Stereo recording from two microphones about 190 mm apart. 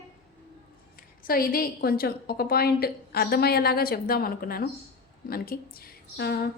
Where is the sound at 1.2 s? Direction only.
50° left (ahead or behind).